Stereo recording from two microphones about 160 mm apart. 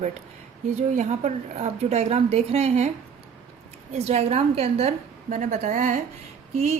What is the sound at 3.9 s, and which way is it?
A woman's voice, 40° right (ahead or behind).